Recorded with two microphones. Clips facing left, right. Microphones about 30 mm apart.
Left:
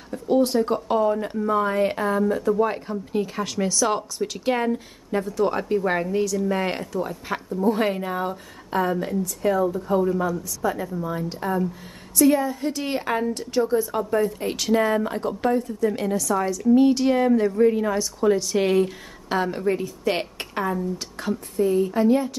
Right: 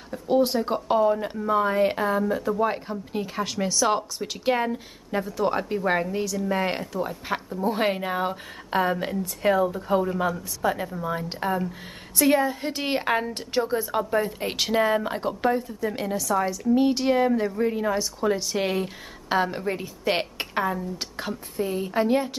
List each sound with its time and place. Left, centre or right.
0.1 s speech: centre
7.7 s a woman's voice: right
14.8 s a woman's voice: centre